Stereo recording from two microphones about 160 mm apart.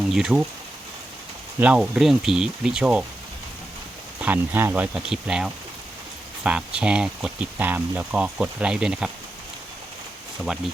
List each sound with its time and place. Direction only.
0.1 s speech: 5° right (ahead or behind)
1.5 s speech: 10° right (ahead or behind)
4.2 s speech: 10° right (ahead or behind)